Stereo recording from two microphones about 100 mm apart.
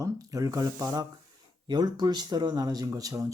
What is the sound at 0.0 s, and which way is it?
Speech, 35° right (ahead or behind).